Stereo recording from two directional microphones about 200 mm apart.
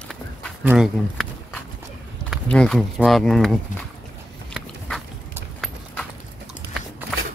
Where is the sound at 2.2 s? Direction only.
5° left (ahead or behind).